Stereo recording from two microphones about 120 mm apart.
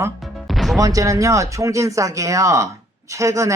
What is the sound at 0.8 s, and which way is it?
Speech, 30° right (ahead or behind).